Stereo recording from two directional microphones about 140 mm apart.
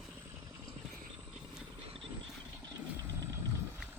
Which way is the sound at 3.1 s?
20° right (ahead or behind).